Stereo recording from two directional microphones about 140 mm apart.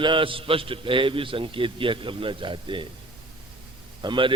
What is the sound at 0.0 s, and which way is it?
A man's voice, 35° right (ahead or behind).